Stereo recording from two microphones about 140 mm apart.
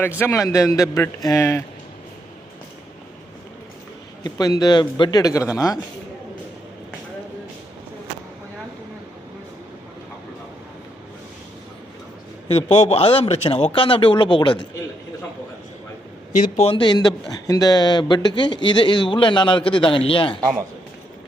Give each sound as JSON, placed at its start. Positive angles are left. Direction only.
{"t": 0.2, "sound": "a man's voice", "side_deg": 20}
{"t": 4.2, "sound": "a man's voice", "side_deg": 30}
{"t": 12.5, "sound": "a man's voice", "side_deg": 50}
{"t": 16.3, "sound": "speech", "side_deg": 55}
{"t": 16.7, "sound": "speech", "side_deg": 30}